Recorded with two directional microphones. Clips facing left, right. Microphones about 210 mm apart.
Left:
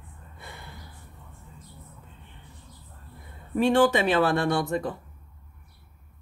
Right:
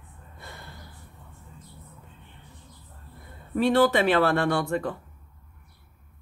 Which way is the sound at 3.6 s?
15° left (ahead or behind).